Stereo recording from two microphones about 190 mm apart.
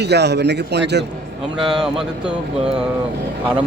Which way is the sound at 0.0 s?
60° right (ahead or behind).